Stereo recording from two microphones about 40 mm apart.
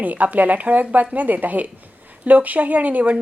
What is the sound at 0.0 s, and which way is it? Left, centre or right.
Speech, right.